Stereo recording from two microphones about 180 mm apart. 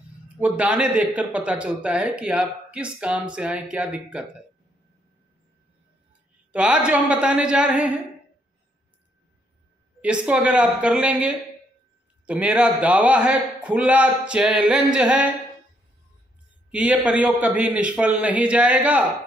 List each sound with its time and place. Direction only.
0.4 s speech: 5° right (ahead or behind)
6.5 s a woman's voice: 5° right (ahead or behind)
10.0 s speech: 5° right (ahead or behind)
16.7 s speech: 5° right (ahead or behind)